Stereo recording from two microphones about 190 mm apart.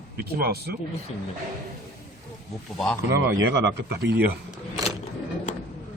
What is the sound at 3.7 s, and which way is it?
Speech, 60° right (ahead or behind).